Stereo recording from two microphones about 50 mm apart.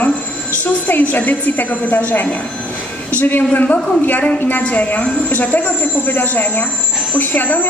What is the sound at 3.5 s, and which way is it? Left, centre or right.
A woman's voice, left.